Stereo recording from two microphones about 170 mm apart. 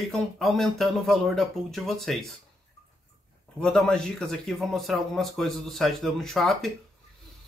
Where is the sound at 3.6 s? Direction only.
5° left (ahead or behind).